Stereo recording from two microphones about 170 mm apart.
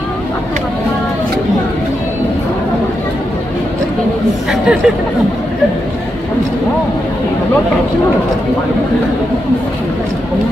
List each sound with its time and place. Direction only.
4.5 s speech: 5° right (ahead or behind)